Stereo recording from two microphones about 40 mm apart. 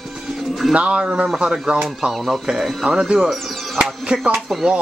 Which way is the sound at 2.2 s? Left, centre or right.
Centre.